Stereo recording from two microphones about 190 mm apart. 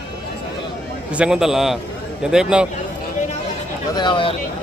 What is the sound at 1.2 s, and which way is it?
Speech, 5° right (ahead or behind).